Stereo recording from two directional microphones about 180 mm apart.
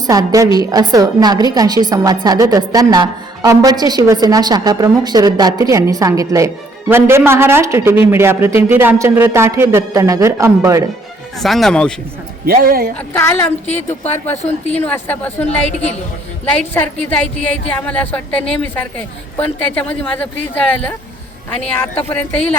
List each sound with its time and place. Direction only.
0.1 s a woman's voice: 20° right (ahead or behind)
11.3 s speech: centre (ahead or behind)
12.5 s speech: 55° right (ahead or behind)
13.1 s speech: 10° left (ahead or behind)
16.5 s speech: 10° left (ahead or behind)